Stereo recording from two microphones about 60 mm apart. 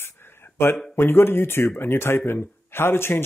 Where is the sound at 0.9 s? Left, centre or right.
Left.